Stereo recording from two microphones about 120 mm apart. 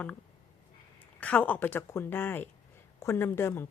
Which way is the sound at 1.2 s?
10° left (ahead or behind).